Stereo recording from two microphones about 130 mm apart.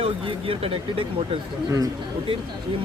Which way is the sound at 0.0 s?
45° right (ahead or behind).